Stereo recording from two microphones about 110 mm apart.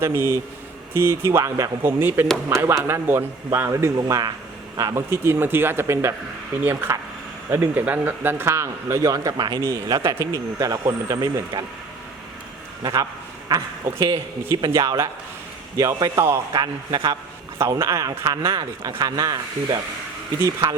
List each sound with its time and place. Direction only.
0.0 s speech: 20° right (ahead or behind)
12.8 s speech: 35° right (ahead or behind)
14.7 s speech: 30° right (ahead or behind)
18.5 s speech: 35° right (ahead or behind)